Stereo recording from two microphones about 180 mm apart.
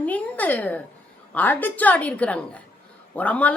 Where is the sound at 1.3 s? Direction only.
10° left (ahead or behind).